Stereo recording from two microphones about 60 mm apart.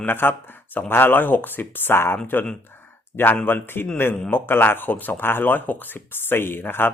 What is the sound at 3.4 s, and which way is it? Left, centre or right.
Speech, left.